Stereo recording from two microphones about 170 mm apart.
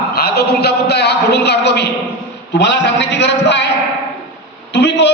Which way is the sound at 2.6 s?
90° left.